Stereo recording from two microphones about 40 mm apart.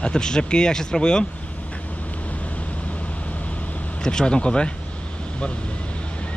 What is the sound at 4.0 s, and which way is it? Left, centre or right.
Speech, centre.